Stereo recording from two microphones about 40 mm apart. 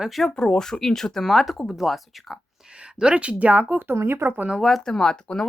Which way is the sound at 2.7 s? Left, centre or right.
Right.